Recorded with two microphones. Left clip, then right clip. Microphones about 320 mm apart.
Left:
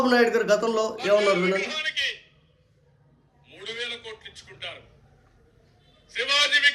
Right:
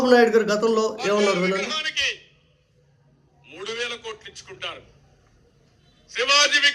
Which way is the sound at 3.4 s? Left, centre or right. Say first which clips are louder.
Right 4 dB; centre.